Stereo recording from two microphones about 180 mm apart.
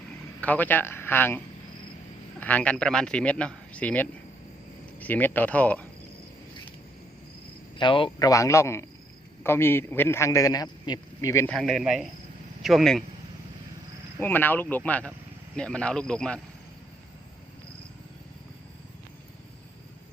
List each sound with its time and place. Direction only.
0.4 s a man's voice: 10° left (ahead or behind)
2.4 s a man's voice: 10° left (ahead or behind)
7.8 s a man's voice: 30° left (ahead or behind)
11.5 s speech: centre (ahead or behind)
14.2 s a man's voice: 10° left (ahead or behind)